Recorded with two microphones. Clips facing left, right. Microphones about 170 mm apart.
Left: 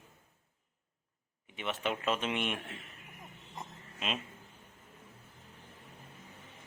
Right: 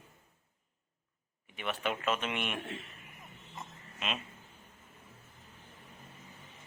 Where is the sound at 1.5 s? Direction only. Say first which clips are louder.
Even; 25° left (ahead or behind).